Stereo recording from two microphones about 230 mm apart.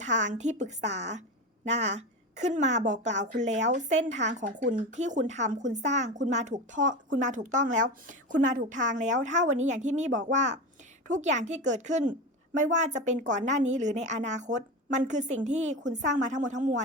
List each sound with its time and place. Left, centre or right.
0.0 s a woman's voice: right